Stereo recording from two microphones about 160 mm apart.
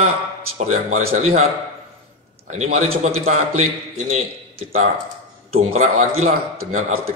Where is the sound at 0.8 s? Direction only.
50° right (ahead or behind).